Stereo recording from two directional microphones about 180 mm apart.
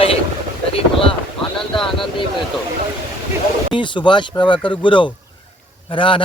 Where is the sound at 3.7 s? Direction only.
25° left (ahead or behind).